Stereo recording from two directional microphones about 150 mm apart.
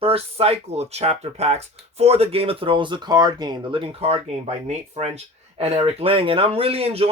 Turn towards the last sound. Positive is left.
turn(degrees=-40)  # may be behind; listen again after turning